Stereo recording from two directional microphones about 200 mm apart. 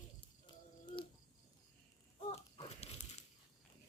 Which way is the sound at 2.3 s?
30° left (ahead or behind).